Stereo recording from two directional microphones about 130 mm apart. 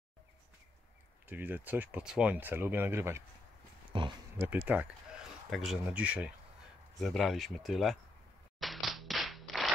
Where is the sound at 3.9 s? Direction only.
40° right (ahead or behind).